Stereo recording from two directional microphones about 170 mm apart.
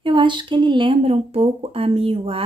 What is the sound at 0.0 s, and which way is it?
Speech, 30° right (ahead or behind).